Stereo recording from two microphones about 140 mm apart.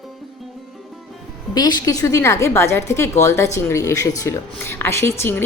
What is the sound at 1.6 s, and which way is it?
A woman's voice, 30° left (ahead or behind).